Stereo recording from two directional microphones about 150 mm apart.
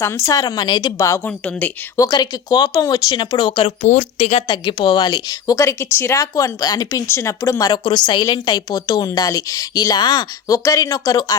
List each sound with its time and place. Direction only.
0.0 s speech: 20° left (ahead or behind)
2.0 s speech: 25° left (ahead or behind)
3.8 s speech: 50° left (ahead or behind); by 11.3 s 25° left (ahead or behind)